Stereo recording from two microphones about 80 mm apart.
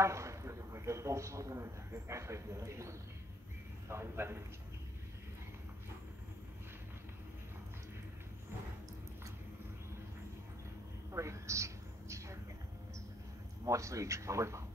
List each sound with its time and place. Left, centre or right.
0.0 s a man's voice: right
11.1 s a sound: right
13.7 s speech: right